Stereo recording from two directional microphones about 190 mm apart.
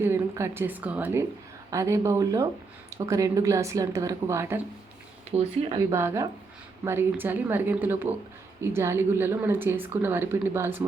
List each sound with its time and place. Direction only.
0.0 s speech: 15° right (ahead or behind)
5.3 s speech: 35° right (ahead or behind)
5.9 s speech: 15° right (ahead or behind)